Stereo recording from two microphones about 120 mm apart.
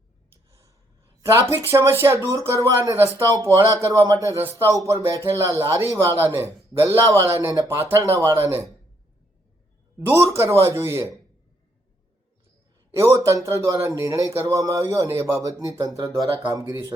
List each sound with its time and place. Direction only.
1.2 s speech: 25° right (ahead or behind)
10.1 s speech: 20° right (ahead or behind)
13.0 s speech: 25° right (ahead or behind)